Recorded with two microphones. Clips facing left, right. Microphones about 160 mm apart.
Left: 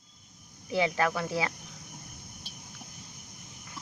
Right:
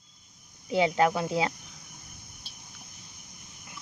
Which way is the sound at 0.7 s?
20° right (ahead or behind).